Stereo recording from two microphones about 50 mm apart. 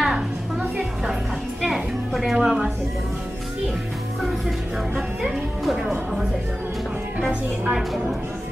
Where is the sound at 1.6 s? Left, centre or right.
Centre.